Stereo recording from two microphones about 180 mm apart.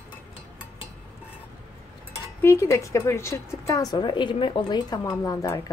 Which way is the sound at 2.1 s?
15° left (ahead or behind).